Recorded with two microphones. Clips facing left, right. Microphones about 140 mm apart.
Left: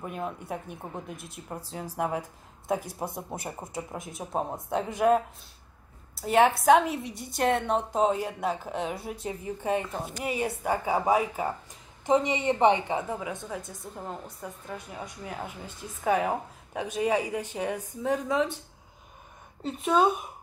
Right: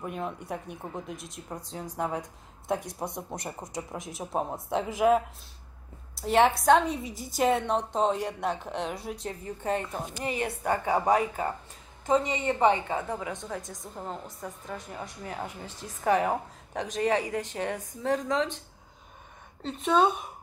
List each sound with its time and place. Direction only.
0.0 s a woman's voice: centre (ahead or behind)
12.1 s a woman's voice: 20° left (ahead or behind)
19.6 s a woman's voice: 5° left (ahead or behind)